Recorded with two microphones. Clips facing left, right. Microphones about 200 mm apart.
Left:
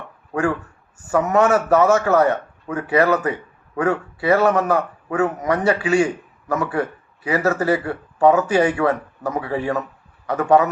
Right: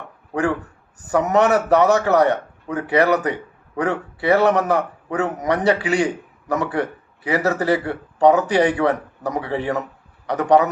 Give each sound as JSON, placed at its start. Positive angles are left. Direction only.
{"t": 1.0, "sound": "speech", "side_deg": -20}